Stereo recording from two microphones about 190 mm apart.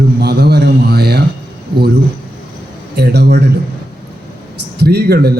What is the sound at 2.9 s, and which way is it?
Speech, 60° right (ahead or behind).